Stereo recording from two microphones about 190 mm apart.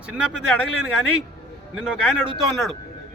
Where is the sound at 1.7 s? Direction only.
5° right (ahead or behind).